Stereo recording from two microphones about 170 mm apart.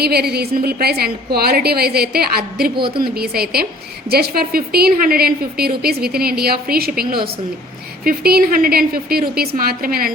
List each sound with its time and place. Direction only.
0.0 s a woman's voice: 70° right (ahead or behind)
2.7 s speech: 30° right (ahead or behind)
3.0 s a woman's voice: 65° right (ahead or behind)